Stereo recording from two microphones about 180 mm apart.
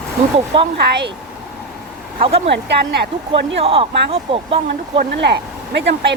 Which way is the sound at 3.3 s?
30° right (ahead or behind).